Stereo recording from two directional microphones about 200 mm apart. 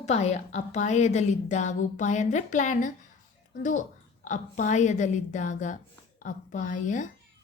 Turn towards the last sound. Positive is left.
turn(degrees=40)  # may be behind; listen again after turning